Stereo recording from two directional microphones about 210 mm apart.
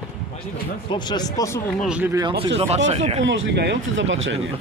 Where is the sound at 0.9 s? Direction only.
20° left (ahead or behind).